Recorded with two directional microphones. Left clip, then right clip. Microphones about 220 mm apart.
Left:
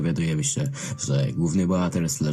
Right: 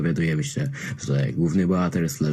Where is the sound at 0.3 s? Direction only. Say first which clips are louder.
Even; centre (ahead or behind).